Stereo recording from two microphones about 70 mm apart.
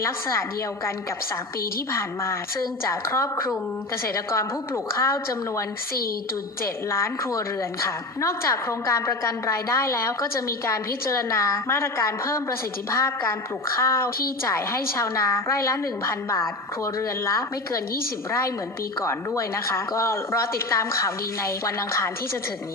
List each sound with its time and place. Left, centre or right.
0.0 s a woman's voice: left
1.9 s a woman's voice: left
6.9 s a woman's voice: left
19.0 s a woman's voice: left